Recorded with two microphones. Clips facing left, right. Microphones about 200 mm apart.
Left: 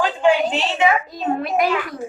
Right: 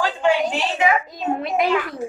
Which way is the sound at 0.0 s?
20° left (ahead or behind).